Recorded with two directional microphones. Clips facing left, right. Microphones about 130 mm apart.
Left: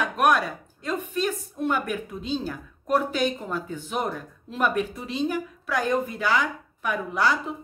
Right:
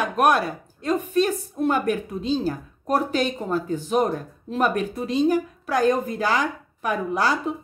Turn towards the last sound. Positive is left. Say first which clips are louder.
# right 2 dB
turn(degrees=-40)  # may be behind; listen again after turning